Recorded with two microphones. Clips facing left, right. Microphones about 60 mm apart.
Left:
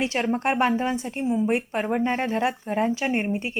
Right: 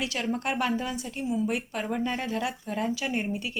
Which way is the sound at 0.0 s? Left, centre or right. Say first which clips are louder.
Left 6 dB; left.